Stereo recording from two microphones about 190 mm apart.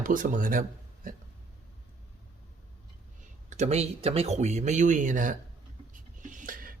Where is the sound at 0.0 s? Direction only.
45° right (ahead or behind).